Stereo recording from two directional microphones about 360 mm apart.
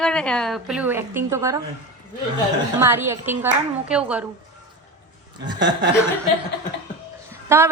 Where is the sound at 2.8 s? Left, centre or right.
Centre.